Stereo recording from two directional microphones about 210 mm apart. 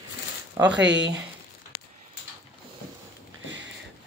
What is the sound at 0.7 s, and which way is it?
Speech, 60° right (ahead or behind).